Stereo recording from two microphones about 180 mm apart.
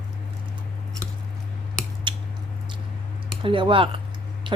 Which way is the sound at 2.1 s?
25° right (ahead or behind).